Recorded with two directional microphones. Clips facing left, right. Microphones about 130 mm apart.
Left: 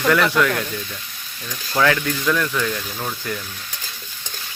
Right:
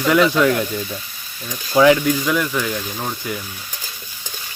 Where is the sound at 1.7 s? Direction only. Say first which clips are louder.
Right 6 dB; 15° right (ahead or behind).